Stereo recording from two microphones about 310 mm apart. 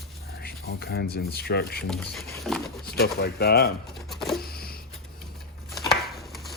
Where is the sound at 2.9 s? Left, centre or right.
Left.